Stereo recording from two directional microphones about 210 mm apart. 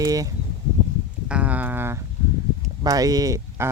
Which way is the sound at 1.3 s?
5° right (ahead or behind).